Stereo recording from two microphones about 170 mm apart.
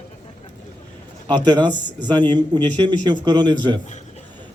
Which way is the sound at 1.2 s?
25° right (ahead or behind).